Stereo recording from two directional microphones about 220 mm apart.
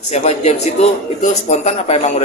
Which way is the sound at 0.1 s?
30° left (ahead or behind).